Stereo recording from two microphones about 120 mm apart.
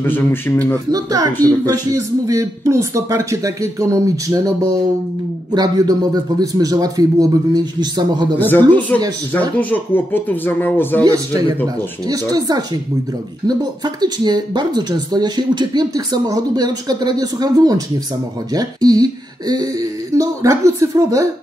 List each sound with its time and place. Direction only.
0.0 s speech: 15° left (ahead or behind)
0.9 s a man's voice: 30° right (ahead or behind)
8.4 s speech: 15° left (ahead or behind)
11.1 s speech: 30° right (ahead or behind)